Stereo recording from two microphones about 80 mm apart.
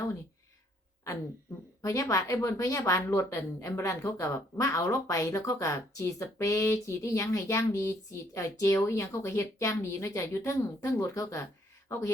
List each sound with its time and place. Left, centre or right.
1.8 s a woman's voice: left